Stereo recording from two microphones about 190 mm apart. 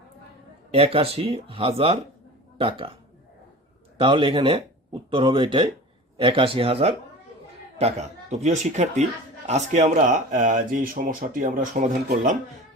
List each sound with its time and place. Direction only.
0.7 s speech: 30° right (ahead or behind)